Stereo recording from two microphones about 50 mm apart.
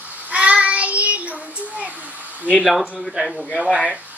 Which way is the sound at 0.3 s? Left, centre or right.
Right.